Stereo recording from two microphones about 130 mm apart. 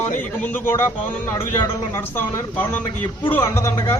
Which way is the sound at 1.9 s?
20° left (ahead or behind).